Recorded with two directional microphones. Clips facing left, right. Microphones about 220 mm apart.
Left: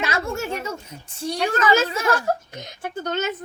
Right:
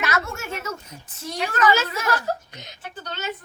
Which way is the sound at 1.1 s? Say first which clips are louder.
Left 5 dB; 30° left (ahead or behind).